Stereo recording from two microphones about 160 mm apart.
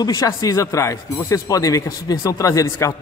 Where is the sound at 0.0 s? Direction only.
20° left (ahead or behind).